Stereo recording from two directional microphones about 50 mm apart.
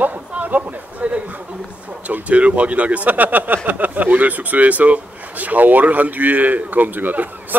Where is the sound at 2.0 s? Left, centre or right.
Right.